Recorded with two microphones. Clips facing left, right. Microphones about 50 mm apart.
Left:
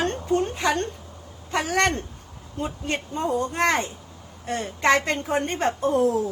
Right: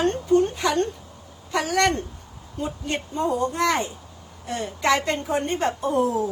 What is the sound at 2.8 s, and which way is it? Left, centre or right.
A woman's voice, left.